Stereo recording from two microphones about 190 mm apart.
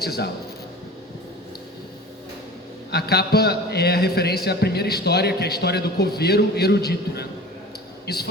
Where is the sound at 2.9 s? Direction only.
55° left (ahead or behind).